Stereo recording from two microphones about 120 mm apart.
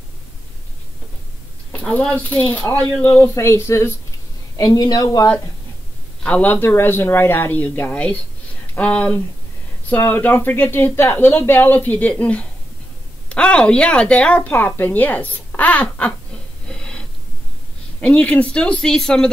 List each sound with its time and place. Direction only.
1.7 s a sound: 10° left (ahead or behind)
2.2 s a woman's voice: 15° left (ahead or behind)
4.6 s speech: 30° left (ahead or behind)
6.2 s a woman's voice: 15° left (ahead or behind)
16.6 s a sound: 5° left (ahead or behind)
18.0 s a woman's voice: 10° left (ahead or behind)